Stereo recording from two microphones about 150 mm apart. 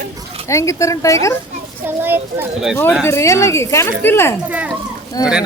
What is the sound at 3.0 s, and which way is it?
A woman's voice, 20° left (ahead or behind).